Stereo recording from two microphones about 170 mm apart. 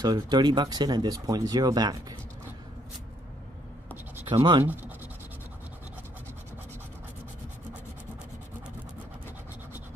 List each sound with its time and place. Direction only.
0.0 s speech: 25° right (ahead or behind)
4.3 s speech: 30° right (ahead or behind)